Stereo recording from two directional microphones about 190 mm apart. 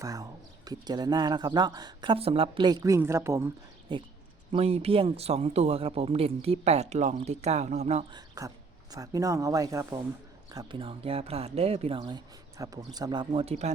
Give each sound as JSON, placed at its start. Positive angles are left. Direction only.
{"t": 0.0, "sound": "speech", "side_deg": -20}
{"t": 3.9, "sound": "speech", "side_deg": -25}
{"t": 8.1, "sound": "speech", "side_deg": -20}